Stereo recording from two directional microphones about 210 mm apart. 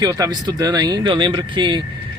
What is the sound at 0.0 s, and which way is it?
Speech, 20° right (ahead or behind).